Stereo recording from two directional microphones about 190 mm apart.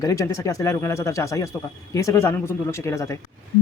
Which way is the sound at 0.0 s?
15° left (ahead or behind).